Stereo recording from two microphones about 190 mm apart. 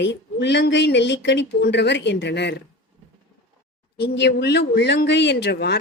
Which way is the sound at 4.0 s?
65° left (ahead or behind).